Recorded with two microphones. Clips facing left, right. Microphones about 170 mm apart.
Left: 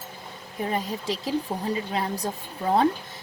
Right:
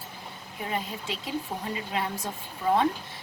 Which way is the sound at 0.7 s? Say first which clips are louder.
Left 4 dB; 35° left (ahead or behind).